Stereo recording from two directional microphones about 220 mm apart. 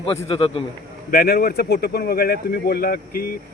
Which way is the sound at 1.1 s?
45° left (ahead or behind).